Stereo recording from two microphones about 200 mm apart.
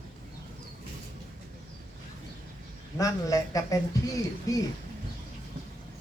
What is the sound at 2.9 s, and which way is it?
Speech, 15° left (ahead or behind).